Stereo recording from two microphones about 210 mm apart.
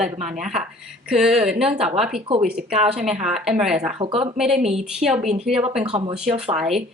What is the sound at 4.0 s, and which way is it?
Speech, 25° right (ahead or behind).